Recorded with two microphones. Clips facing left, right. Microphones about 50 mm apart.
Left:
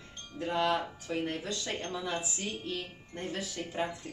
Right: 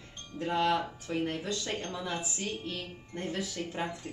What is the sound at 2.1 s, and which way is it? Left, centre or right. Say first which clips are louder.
Speech: left 1 dB; centre.